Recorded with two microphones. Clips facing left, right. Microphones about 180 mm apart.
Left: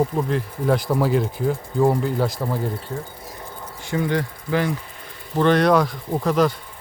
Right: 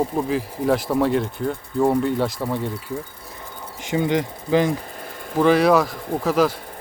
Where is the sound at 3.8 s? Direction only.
20° right (ahead or behind).